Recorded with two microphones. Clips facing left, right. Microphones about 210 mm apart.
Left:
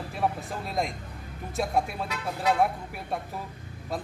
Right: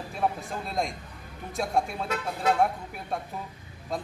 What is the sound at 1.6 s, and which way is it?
Speech, 5° left (ahead or behind).